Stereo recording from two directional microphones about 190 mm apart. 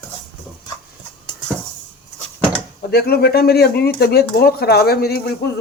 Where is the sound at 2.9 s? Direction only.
55° left (ahead or behind).